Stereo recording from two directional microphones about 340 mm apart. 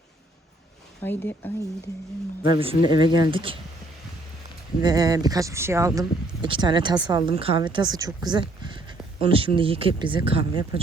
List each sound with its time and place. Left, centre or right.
1.0 s speech: centre
2.6 s speech: centre
4.8 s speech: centre